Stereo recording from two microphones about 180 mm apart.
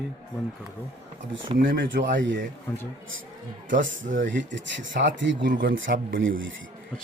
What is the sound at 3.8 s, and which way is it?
A man's voice, 90° right.